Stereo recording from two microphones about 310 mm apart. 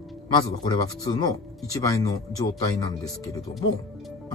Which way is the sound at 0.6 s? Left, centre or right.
Centre.